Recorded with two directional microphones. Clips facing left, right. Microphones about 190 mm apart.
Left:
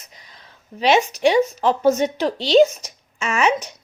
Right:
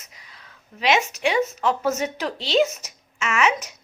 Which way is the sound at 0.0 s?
30° left (ahead or behind).